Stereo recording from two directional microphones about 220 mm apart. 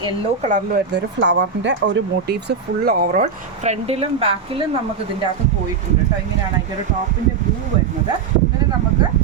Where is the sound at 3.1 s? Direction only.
30° right (ahead or behind).